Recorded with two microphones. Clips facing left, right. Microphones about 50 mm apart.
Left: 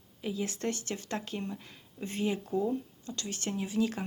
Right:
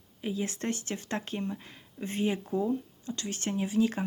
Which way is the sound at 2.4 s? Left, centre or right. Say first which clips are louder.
Right 1 dB; centre.